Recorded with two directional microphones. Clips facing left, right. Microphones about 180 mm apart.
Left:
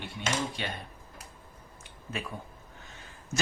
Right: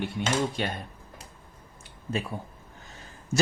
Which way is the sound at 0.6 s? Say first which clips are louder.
Right 6 dB; 45° right (ahead or behind).